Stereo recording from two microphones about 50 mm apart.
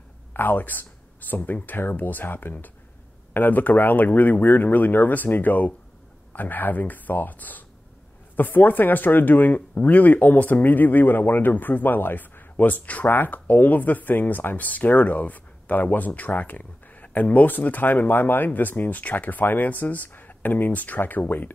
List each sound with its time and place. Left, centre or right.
0.3 s speech: left